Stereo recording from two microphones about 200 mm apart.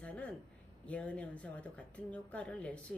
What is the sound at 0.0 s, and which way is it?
Speech, 5° left (ahead or behind).